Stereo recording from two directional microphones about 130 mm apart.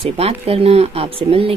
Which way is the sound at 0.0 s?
50° right (ahead or behind).